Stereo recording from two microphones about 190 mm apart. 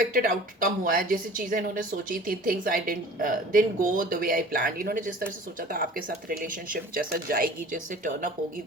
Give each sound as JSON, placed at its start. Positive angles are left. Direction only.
{"t": 0.0, "sound": "a woman's voice", "side_deg": -45}